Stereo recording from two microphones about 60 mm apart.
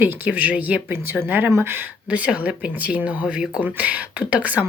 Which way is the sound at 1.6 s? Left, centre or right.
Right.